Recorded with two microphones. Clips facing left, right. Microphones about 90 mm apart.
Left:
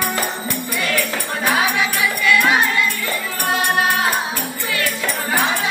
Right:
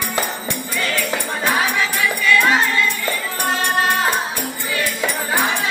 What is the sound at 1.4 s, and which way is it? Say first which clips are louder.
Music: left 1 dB; 15° left (ahead or behind).